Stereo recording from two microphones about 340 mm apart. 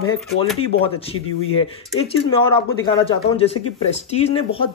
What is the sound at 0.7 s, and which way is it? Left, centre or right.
Speech, centre.